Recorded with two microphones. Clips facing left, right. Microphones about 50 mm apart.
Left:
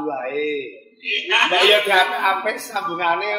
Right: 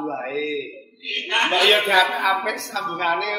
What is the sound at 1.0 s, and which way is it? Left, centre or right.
Speech, left.